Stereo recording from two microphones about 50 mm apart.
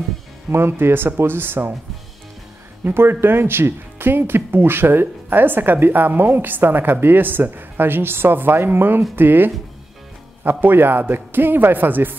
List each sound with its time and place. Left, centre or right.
0.5 s speech: right
2.8 s speech: right